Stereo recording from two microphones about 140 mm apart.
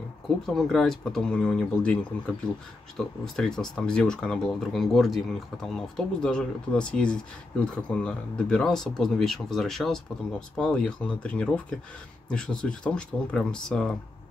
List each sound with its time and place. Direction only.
0.5 s speech: 5° left (ahead or behind)